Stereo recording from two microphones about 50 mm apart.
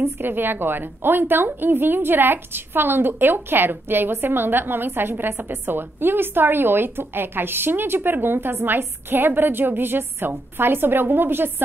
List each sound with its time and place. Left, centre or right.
0.2 s a woman's voice: right